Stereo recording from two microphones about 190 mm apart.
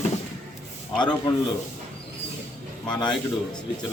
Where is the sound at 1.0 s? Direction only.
25° left (ahead or behind).